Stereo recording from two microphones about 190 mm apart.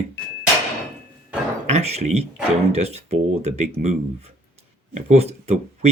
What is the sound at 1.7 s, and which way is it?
Speech, 35° right (ahead or behind).